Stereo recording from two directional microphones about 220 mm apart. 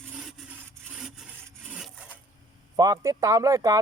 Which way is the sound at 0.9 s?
Centre (ahead or behind).